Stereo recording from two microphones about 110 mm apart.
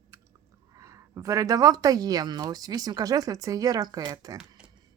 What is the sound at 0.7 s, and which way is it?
Speech, 30° right (ahead or behind).